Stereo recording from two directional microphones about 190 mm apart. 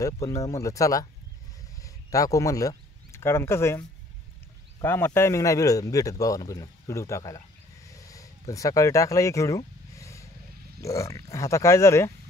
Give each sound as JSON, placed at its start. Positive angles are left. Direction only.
{"t": 0.0, "sound": "speech", "side_deg": 15}
{"t": 4.8, "sound": "speech", "side_deg": 10}
{"t": 7.9, "sound": "a sound", "side_deg": 15}
{"t": 10.8, "sound": "speech", "side_deg": 15}